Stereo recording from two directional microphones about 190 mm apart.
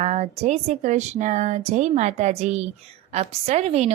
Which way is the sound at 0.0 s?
35° right (ahead or behind).